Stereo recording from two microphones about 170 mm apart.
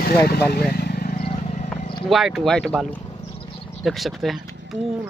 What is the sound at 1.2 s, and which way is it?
Vehicle, 40° left (ahead or behind).